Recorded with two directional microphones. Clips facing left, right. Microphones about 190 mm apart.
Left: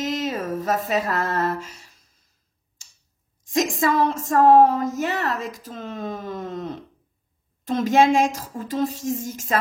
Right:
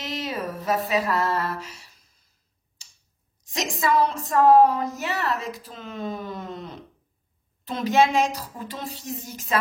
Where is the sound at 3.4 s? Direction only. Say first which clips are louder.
Left 6 dB; 50° left (ahead or behind).